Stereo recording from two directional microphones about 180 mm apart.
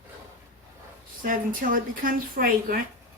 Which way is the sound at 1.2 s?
50° right (ahead or behind).